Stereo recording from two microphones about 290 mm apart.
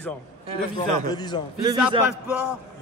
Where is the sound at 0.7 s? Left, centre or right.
Centre.